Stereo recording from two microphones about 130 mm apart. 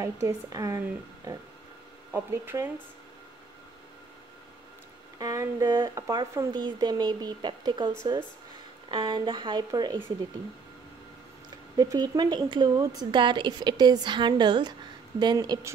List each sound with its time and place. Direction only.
0.0 s speech: 25° right (ahead or behind)
5.2 s a woman's voice: 25° right (ahead or behind)
11.7 s a woman's voice: 30° right (ahead or behind)